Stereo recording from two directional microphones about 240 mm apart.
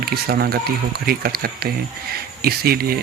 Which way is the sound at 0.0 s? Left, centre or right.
Right.